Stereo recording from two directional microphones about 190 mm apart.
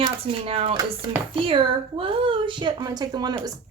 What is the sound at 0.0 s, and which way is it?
Speech, 30° right (ahead or behind).